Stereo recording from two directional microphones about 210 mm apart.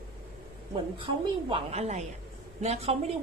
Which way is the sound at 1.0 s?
25° right (ahead or behind).